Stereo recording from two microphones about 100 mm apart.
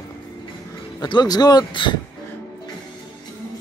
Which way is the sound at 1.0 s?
45° left (ahead or behind).